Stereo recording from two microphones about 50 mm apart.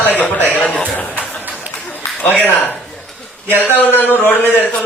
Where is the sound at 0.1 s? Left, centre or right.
Left.